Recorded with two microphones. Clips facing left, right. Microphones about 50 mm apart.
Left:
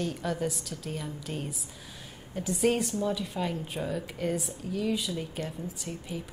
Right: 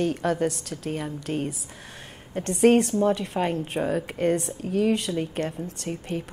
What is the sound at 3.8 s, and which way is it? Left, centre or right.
A woman's voice, right.